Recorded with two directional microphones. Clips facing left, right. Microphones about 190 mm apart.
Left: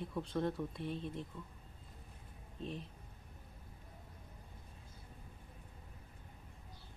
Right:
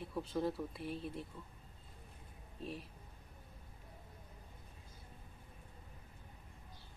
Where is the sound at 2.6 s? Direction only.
5° right (ahead or behind).